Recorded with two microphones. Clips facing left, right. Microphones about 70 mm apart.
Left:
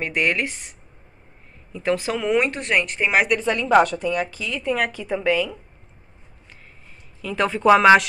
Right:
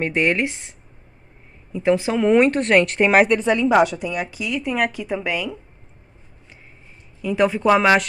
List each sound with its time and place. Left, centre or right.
0.0 s speech: right
2.2 s speech: right
3.2 s speech: right
3.6 s a woman's voice: centre
7.2 s a woman's voice: centre
7.8 s speech: centre